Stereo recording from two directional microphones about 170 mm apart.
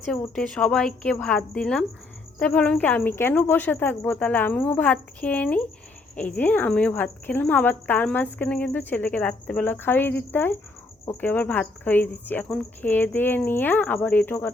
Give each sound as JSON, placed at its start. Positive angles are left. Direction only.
{"t": 0.0, "sound": "a woman's voice", "side_deg": 5}